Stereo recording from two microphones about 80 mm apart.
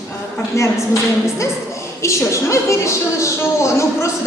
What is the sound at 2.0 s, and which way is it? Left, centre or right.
A woman's voice, left.